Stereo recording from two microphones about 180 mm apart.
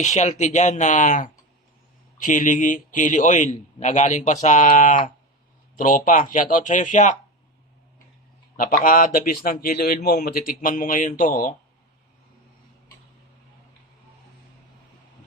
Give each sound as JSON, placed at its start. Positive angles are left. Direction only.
{"t": 0.0, "sound": "a man's voice", "side_deg": 40}
{"t": 8.5, "sound": "a man's voice", "side_deg": 50}